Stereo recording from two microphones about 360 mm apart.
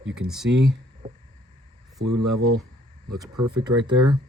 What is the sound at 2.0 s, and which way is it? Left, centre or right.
Speech, right.